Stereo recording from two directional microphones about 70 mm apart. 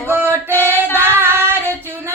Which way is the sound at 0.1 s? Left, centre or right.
Right.